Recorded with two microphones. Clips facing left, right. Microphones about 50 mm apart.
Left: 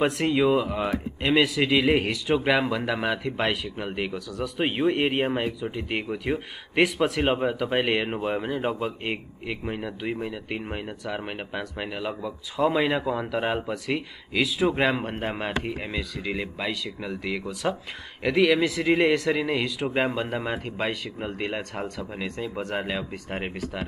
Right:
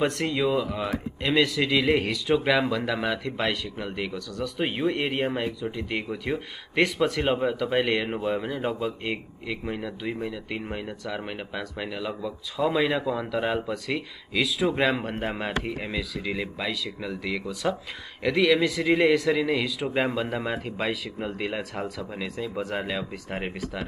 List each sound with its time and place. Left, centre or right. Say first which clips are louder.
0.0 s speech: left 3 dB; centre
0.8 s speech: left 2 dB; centre
2.3 s speech: even; centre
4.7 s speech: left 4 dB; centre
8.2 s speech: left 1 dB; centre